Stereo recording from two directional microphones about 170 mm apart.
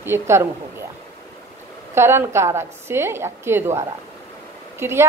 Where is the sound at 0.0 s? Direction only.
15° right (ahead or behind).